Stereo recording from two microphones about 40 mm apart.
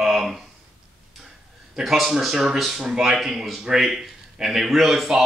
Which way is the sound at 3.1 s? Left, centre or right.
Centre.